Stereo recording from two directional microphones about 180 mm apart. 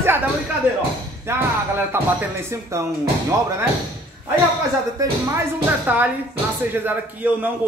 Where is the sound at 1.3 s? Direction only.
15° right (ahead or behind).